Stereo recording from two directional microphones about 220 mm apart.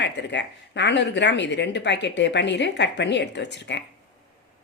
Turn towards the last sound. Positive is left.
turn(degrees=55)  # may be behind; listen again after turning